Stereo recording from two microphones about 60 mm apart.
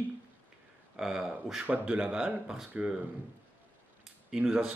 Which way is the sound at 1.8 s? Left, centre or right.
Centre.